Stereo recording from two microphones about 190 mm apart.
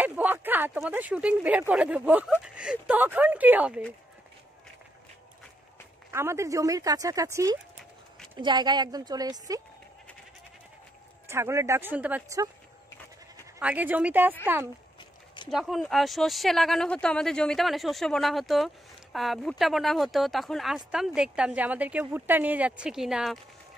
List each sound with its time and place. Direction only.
0.0 s speech: 10° right (ahead or behind)
6.1 s speech: 15° right (ahead or behind)
11.2 s speech: 15° right (ahead or behind)
13.6 s speech: 5° right (ahead or behind)
15.5 s speech: centre (ahead or behind)